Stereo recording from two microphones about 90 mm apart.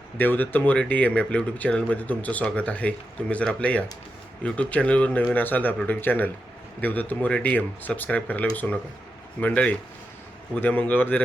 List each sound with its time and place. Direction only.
0.2 s speech: 20° left (ahead or behind)